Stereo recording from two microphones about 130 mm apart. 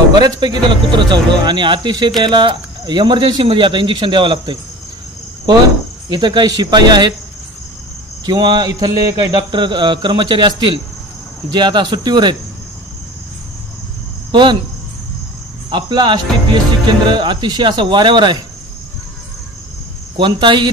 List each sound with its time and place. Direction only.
0.2 s speech: 35° right (ahead or behind)
6.0 s speech: 35° right (ahead or behind)
8.3 s speech: 35° right (ahead or behind)
14.3 s cricket: 35° right (ahead or behind)
15.7 s speech: 35° right (ahead or behind)
20.2 s speech: 40° right (ahead or behind)